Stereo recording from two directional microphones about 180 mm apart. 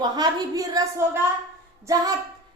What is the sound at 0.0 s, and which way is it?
A woman's voice, 20° right (ahead or behind).